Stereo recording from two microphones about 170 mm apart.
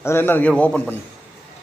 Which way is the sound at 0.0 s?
15° left (ahead or behind).